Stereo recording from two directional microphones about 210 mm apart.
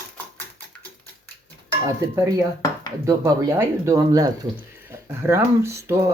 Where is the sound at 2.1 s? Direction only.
15° right (ahead or behind).